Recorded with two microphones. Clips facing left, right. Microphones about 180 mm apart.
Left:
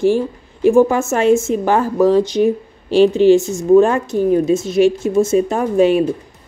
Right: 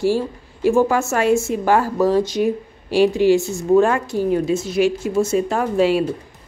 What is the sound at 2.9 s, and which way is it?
Speech, 10° right (ahead or behind).